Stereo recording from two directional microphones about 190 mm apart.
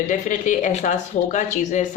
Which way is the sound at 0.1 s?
40° left (ahead or behind).